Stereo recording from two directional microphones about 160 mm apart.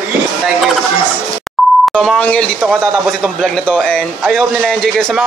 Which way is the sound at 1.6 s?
Centre (ahead or behind).